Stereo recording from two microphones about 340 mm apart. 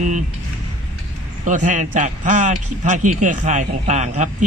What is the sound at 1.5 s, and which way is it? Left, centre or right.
A man's voice, right.